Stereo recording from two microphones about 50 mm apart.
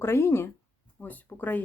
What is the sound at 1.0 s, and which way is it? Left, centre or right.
Speech, left.